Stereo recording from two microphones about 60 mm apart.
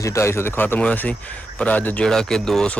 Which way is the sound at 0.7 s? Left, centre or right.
Left.